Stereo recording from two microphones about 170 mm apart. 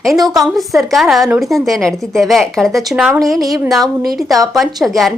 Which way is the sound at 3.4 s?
20° right (ahead or behind).